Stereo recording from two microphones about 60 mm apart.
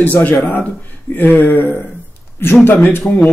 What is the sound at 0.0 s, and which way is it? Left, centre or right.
Speech, left.